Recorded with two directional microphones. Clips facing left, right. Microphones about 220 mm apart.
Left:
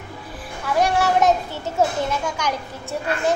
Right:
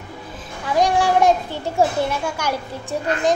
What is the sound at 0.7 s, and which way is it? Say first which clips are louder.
A child's voice: right 2 dB; 15° right (ahead or behind).